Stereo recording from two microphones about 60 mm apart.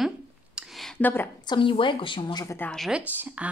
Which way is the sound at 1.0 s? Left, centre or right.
Left.